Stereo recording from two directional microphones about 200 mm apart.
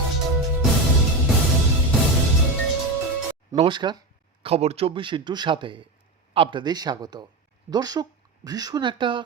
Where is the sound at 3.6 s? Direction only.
25° right (ahead or behind).